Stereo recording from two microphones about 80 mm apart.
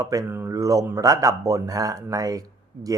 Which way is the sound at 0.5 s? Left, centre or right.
Right.